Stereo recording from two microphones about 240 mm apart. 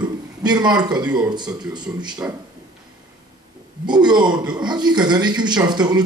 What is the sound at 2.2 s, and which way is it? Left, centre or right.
Speech, centre.